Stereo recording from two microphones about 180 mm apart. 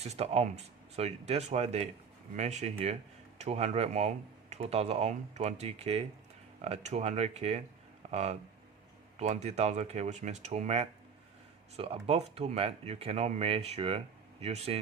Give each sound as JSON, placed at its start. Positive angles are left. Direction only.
{"t": 0.0, "sound": "speech", "side_deg": -35}